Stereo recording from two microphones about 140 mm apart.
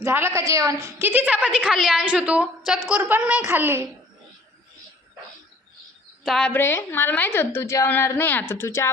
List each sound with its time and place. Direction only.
0.0 s a woman's voice: 20° right (ahead or behind); by 2.0 s 5° left (ahead or behind)
2.0 s a woman's voice: 10° right (ahead or behind)
6.2 s a woman's voice: 5° left (ahead or behind)
6.5 s a woman's voice: 15° left (ahead or behind)